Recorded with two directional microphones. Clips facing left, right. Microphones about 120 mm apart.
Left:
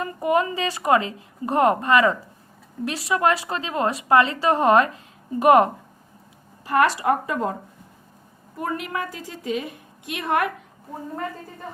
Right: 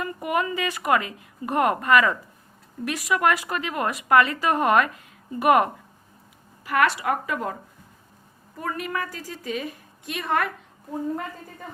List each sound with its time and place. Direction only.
0.0 s a woman's voice: 30° left (ahead or behind)
8.5 s speech: 20° left (ahead or behind)